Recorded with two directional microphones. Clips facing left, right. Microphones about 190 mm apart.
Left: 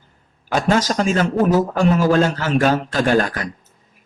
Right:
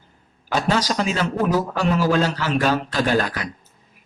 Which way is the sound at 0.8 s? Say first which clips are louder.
Left 4 dB; 45° left (ahead or behind).